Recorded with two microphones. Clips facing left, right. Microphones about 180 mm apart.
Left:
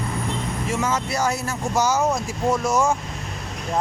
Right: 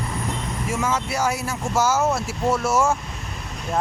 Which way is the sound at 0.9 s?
10° right (ahead or behind).